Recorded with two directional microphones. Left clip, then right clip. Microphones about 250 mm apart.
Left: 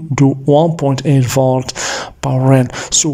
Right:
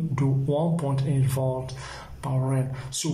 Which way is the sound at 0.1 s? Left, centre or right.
Left.